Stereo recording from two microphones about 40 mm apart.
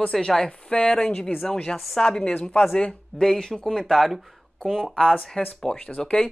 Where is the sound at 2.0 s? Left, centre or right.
Centre.